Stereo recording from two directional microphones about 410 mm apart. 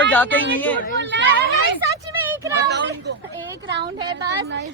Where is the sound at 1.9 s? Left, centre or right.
Centre.